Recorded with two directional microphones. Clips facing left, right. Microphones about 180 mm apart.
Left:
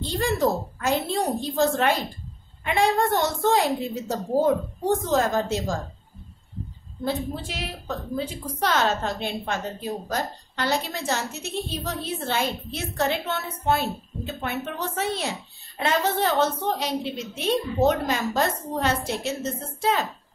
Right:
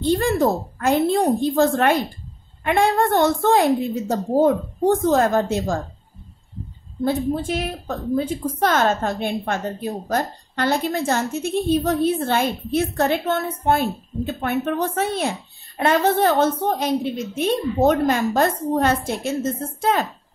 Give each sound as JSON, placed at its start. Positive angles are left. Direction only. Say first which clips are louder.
{"t": 0.0, "sound": "a woman's voice", "louder": "right 5 dB", "side_deg": -55}
{"t": 5.1, "sound": "a woman's voice", "louder": "right 4 dB", "side_deg": -55}
{"t": 7.1, "sound": "a woman's voice", "louder": "right 7 dB", "side_deg": -50}